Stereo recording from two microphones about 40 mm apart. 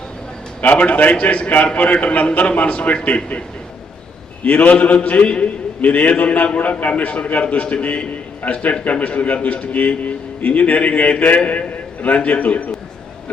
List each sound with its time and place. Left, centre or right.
0.6 s a man's voice: left
4.4 s a man's voice: left